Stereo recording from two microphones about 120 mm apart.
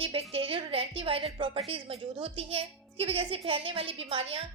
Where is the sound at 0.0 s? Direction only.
50° right (ahead or behind).